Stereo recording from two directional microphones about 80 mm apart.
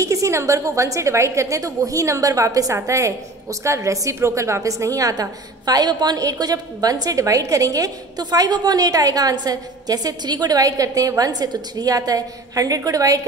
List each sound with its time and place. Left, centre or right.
0.0 s a woman's voice: right